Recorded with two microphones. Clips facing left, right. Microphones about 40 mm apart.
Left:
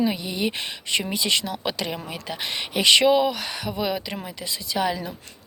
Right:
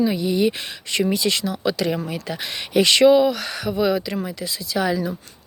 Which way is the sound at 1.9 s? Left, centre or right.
Centre.